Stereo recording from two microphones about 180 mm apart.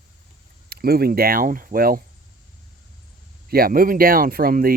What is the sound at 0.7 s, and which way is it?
Speech, 60° right (ahead or behind).